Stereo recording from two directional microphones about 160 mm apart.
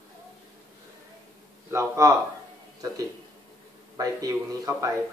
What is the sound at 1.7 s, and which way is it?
Speech, 20° right (ahead or behind).